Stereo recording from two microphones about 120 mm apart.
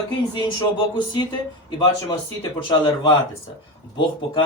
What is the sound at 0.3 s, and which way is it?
Speech, 40° left (ahead or behind).